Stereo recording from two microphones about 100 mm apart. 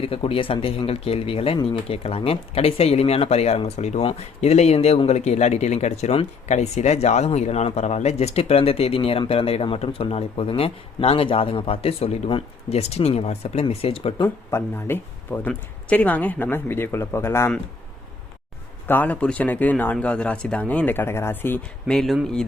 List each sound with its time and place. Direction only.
0.0 s speech: 70° left (ahead or behind)
14.5 s speech: 20° left (ahead or behind)
18.9 s speech: 15° left (ahead or behind)
21.8 s speech: 5° left (ahead or behind)